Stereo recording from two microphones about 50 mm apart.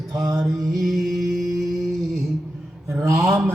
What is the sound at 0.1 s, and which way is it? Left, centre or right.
Mantra, centre.